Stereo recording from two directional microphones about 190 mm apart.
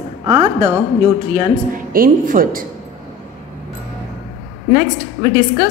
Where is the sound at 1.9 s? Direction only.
45° right (ahead or behind).